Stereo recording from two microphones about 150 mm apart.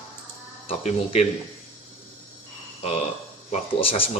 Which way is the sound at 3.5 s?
40° left (ahead or behind).